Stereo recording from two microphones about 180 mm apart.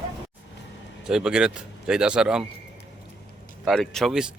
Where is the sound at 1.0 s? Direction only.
5° right (ahead or behind).